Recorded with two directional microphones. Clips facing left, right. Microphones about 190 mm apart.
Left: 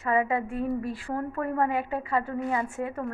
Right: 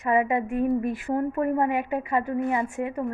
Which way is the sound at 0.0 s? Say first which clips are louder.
Right 3 dB; 20° right (ahead or behind).